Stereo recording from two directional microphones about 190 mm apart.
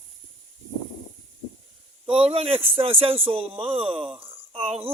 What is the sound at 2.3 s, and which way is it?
Speech, 30° right (ahead or behind).